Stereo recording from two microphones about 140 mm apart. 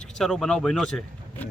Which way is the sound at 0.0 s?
5° left (ahead or behind).